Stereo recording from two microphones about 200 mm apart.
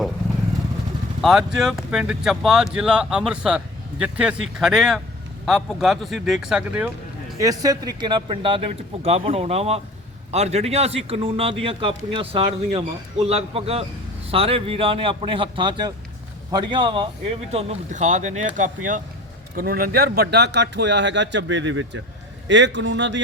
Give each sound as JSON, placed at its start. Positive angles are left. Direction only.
{"t": 1.2, "sound": "speech", "side_deg": 0}
{"t": 7.3, "sound": "a man's voice", "side_deg": -15}